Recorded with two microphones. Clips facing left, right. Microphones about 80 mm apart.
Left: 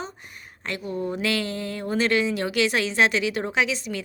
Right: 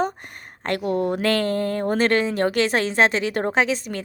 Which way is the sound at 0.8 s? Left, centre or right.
Right.